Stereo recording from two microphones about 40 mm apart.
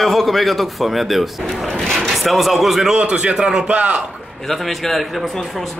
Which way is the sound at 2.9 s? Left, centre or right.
Right.